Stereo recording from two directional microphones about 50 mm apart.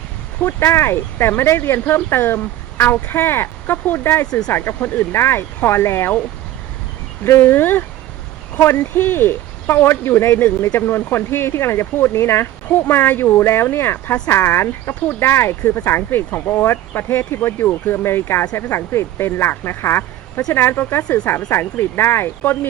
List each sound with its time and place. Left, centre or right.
0.7 s speech: left
7.4 s speech: left
12.6 s speech: left
15.0 s speech: left